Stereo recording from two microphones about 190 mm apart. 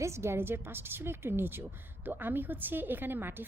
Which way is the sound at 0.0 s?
15° right (ahead or behind).